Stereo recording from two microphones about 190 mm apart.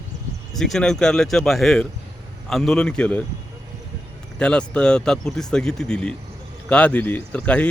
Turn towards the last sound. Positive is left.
turn(degrees=5)  # may be behind; listen again after turning